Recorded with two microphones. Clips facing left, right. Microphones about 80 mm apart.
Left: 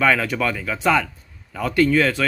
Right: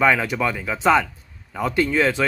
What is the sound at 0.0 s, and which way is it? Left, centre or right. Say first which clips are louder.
Speech: even; centre.